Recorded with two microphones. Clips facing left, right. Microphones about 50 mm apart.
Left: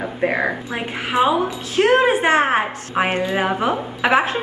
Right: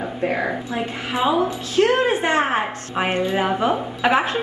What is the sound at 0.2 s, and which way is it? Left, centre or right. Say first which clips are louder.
A woman's voice: left 3 dB; left.